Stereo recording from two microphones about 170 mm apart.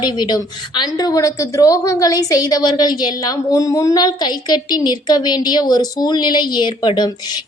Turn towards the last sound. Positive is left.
turn(degrees=25)  # may be behind; listen again after turning